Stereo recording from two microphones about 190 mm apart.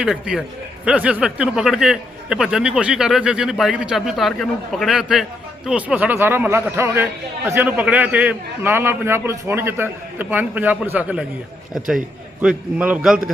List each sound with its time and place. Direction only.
0.0 s a man's voice: 5° right (ahead or behind)
12.4 s speech: 5° right (ahead or behind)